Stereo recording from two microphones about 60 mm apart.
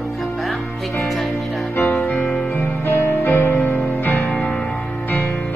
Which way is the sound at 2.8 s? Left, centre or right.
Left.